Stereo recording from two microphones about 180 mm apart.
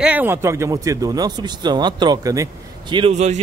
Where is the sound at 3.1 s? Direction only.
40° right (ahead or behind).